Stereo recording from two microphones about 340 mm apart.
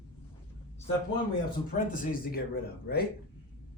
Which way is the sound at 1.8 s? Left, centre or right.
Left.